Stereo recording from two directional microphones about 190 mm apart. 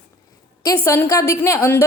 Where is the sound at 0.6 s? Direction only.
15° left (ahead or behind).